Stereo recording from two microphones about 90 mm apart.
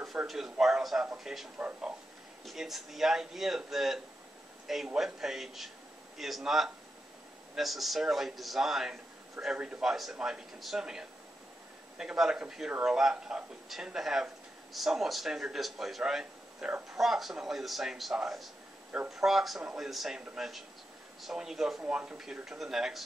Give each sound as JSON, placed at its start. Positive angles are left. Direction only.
{"t": 0.3, "sound": "a man's voice", "side_deg": -5}
{"t": 1.6, "sound": "speech", "side_deg": -15}
{"t": 2.4, "sound": "a man's voice", "side_deg": -5}